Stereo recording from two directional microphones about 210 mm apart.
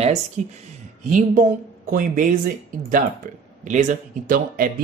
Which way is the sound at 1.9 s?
40° right (ahead or behind).